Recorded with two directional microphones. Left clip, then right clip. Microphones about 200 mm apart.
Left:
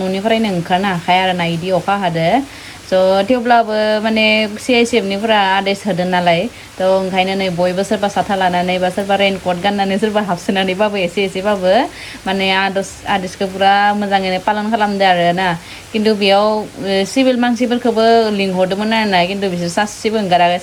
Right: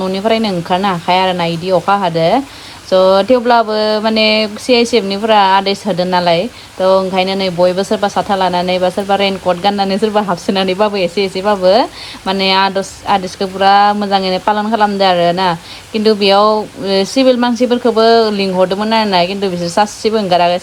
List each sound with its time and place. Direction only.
0.0 s speech: 20° right (ahead or behind)